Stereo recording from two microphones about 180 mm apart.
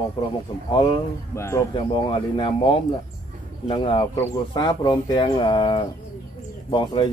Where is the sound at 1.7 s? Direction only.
30° left (ahead or behind).